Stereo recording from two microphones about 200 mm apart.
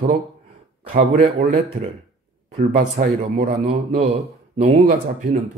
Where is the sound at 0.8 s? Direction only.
40° right (ahead or behind).